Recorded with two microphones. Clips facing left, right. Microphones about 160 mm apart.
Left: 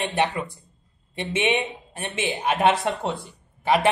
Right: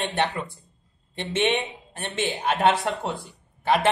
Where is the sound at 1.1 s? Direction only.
10° left (ahead or behind).